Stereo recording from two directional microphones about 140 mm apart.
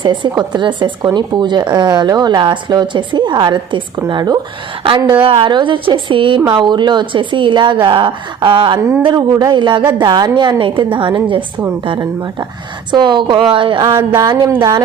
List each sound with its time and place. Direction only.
0.0 s speech: 35° right (ahead or behind)
9.3 s speech: 25° right (ahead or behind)
9.6 s speech: 35° right (ahead or behind)
11.9 s speech: 25° right (ahead or behind)
13.9 s speech: 20° right (ahead or behind)